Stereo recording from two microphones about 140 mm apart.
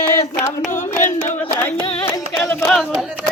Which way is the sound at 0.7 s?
15° left (ahead or behind).